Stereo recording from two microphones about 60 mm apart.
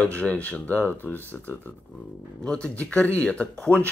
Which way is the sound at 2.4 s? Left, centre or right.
Centre.